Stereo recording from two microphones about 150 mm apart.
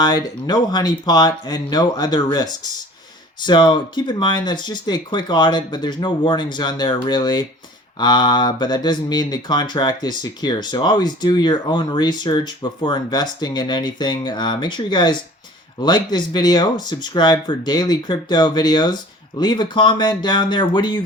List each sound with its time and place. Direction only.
0.0 s speech: 25° left (ahead or behind)